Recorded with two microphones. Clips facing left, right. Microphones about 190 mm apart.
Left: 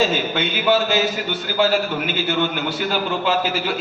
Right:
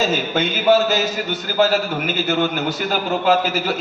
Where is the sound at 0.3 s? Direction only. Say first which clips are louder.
Right 5 dB; 40° right (ahead or behind).